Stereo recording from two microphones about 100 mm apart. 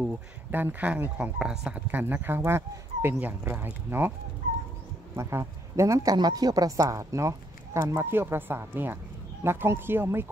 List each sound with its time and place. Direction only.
0.0 s speech: 20° right (ahead or behind)
1.4 s speech: 5° right (ahead or behind)
1.9 s speech: 20° right (ahead or behind)
5.1 s speech: 30° right (ahead or behind)